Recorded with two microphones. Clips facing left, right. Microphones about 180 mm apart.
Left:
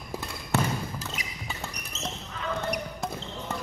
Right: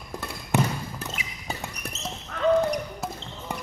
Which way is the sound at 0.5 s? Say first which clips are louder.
Right 3 dB; 15° right (ahead or behind).